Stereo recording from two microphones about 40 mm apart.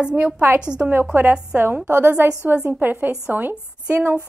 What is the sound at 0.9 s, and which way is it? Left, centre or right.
Speech, right.